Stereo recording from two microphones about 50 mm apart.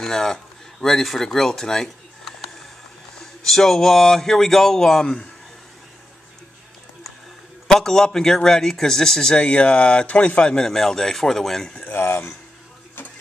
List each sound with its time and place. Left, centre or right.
0.0 s a man's voice: centre
7.6 s speech: centre
9.4 s speech: left
10.5 s speech: centre
11.9 s speech: left